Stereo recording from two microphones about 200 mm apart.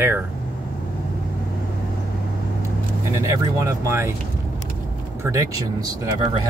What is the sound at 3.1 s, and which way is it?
Speech, 15° right (ahead or behind).